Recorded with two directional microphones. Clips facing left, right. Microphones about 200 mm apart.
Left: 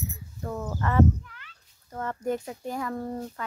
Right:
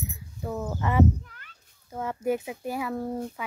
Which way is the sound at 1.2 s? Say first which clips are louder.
Left 2 dB; 45° right (ahead or behind).